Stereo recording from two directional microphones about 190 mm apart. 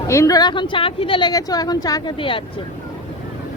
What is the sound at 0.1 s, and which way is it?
Speech, 15° left (ahead or behind).